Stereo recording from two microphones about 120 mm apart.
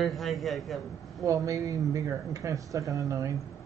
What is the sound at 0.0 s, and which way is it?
Speech, centre (ahead or behind).